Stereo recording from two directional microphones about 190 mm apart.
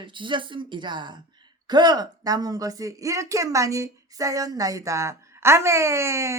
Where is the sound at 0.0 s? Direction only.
25° right (ahead or behind).